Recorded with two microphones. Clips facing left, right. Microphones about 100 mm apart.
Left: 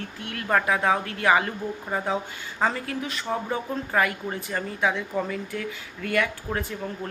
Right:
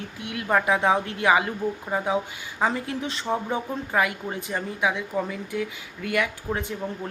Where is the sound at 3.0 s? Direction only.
30° right (ahead or behind).